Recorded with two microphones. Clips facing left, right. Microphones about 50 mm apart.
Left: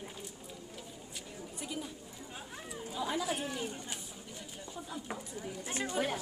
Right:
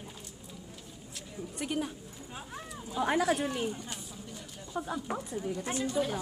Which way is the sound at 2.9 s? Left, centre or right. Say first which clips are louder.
Right 7 dB; right.